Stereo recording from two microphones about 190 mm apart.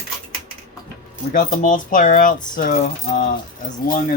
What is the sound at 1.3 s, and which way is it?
Speech, 45° left (ahead or behind).